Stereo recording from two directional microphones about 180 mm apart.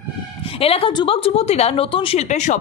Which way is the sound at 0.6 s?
35° left (ahead or behind).